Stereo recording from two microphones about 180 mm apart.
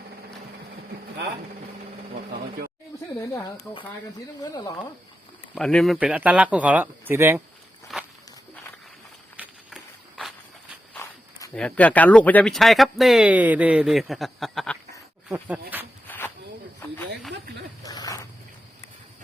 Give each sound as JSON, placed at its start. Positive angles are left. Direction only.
{"t": 2.3, "sound": "speech", "side_deg": -55}
{"t": 3.7, "sound": "speech", "side_deg": 5}
{"t": 5.5, "sound": "speech", "side_deg": 5}
{"t": 7.9, "sound": "walk", "side_deg": 0}
{"t": 9.4, "sound": "a sound", "side_deg": -5}
{"t": 10.9, "sound": "walk", "side_deg": 15}
{"t": 11.5, "sound": "speech", "side_deg": 5}
{"t": 16.0, "sound": "a sound", "side_deg": 10}
{"t": 17.8, "sound": "a sound", "side_deg": 20}